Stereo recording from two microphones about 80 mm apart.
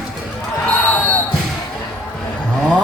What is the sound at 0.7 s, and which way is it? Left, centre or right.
Basketball bounce, left.